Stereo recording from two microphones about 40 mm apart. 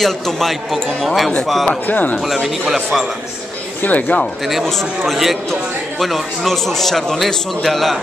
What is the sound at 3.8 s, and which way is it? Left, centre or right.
Speech, left.